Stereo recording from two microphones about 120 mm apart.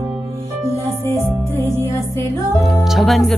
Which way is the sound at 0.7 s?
25° left (ahead or behind).